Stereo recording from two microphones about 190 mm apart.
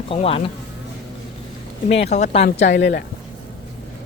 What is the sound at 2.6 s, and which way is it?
Speech, 65° left (ahead or behind).